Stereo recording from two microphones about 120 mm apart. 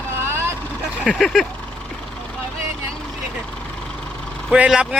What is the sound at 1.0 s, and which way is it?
Speech, 5° left (ahead or behind).